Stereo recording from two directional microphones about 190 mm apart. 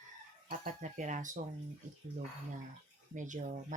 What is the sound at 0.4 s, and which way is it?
Speech, 40° right (ahead or behind).